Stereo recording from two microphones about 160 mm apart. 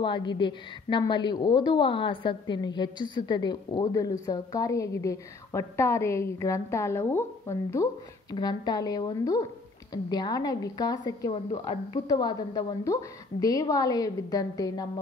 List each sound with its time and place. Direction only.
0.0 s a woman's voice: 30° left (ahead or behind)